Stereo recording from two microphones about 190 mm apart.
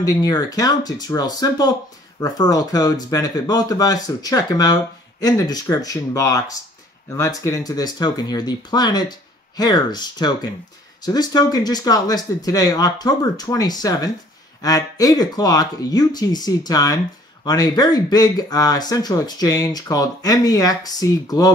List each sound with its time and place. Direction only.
0.0 s speech: 20° left (ahead or behind)